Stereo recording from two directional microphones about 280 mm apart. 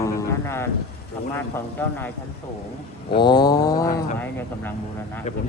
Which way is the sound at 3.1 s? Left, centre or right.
Centre.